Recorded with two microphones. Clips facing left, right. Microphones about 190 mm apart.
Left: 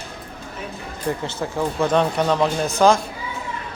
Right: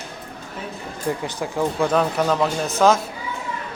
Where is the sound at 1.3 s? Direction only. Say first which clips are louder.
Even; 15° right (ahead or behind).